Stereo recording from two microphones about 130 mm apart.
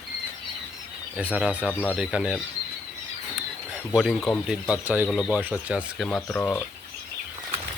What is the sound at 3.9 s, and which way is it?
Speech, 5° left (ahead or behind).